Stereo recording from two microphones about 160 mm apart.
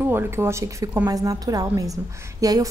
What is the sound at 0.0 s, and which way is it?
A woman's voice, 15° right (ahead or behind).